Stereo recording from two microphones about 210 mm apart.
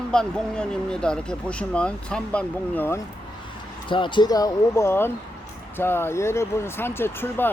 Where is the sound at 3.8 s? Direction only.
25° left (ahead or behind).